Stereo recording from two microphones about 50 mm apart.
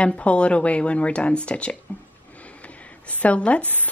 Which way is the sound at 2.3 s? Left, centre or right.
Left.